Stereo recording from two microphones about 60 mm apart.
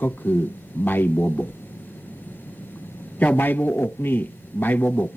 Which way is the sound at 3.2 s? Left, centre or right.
Left.